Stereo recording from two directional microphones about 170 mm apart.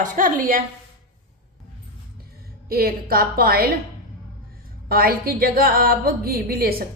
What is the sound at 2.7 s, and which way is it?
Speech, 65° right (ahead or behind).